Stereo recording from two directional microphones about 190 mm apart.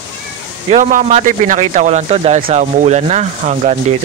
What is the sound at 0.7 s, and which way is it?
Speech, 45° right (ahead or behind).